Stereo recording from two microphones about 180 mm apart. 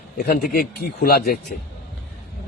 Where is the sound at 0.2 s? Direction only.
55° left (ahead or behind).